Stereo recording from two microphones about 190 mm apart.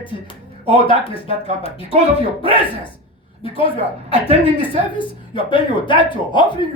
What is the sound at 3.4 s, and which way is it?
Speech, 30° left (ahead or behind).